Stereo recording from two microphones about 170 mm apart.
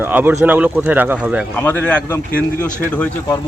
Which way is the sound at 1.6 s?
10° left (ahead or behind).